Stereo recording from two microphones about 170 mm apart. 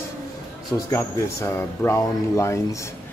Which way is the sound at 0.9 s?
15° left (ahead or behind).